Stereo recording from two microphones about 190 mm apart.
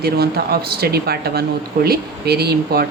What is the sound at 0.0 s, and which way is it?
Speech, 55° right (ahead or behind).